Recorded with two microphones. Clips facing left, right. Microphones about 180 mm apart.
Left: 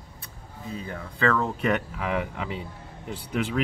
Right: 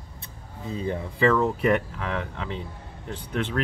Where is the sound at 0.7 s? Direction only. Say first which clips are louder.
Right 7 dB; 25° right (ahead or behind).